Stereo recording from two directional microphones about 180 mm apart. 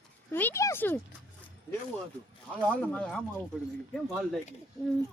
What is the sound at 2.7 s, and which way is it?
Speech, 10° left (ahead or behind).